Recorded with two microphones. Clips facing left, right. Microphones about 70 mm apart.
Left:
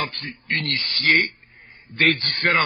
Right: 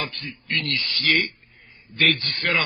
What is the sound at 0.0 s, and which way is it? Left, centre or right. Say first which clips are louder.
A man's voice: left 3 dB; left.